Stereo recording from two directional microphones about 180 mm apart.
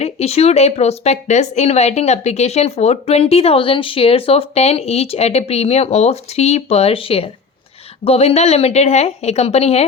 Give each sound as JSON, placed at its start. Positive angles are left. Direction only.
{"t": 0.0, "sound": "speech", "side_deg": 35}